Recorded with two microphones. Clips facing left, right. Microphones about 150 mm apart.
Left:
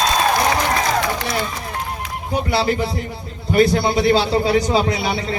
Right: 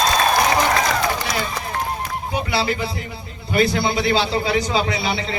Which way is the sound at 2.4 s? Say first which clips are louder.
Left 5 dB; 40° left (ahead or behind).